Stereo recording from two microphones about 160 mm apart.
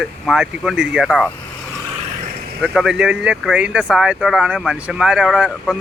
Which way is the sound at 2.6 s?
5° right (ahead or behind).